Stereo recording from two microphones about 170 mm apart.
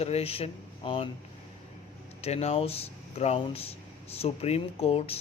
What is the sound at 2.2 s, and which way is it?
Speech, 40° left (ahead or behind).